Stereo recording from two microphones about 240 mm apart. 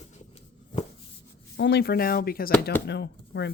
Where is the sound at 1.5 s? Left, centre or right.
Left.